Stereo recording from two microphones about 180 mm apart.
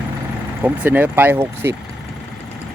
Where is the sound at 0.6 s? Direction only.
10° right (ahead or behind).